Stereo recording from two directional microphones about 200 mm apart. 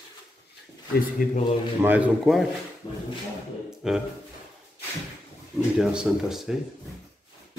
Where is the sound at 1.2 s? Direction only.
45° left (ahead or behind).